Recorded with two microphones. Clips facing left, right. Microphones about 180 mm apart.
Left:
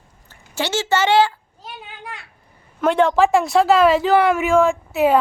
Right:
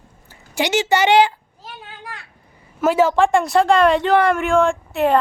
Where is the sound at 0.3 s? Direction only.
15° right (ahead or behind).